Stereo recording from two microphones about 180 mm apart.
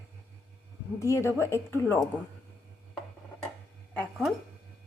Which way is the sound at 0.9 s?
15° left (ahead or behind).